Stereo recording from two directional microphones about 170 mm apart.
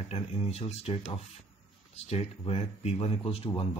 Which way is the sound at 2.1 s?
35° left (ahead or behind).